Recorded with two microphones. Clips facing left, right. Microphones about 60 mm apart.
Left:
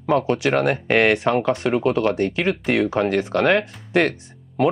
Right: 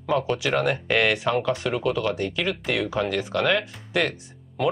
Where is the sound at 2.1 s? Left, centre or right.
Left.